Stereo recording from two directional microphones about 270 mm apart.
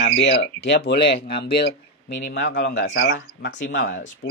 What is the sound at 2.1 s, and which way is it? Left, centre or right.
Speech, left.